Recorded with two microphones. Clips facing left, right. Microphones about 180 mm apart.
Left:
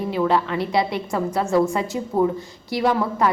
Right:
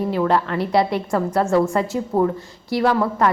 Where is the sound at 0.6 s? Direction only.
35° right (ahead or behind).